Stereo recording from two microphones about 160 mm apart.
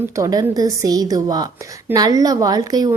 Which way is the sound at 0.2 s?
25° right (ahead or behind).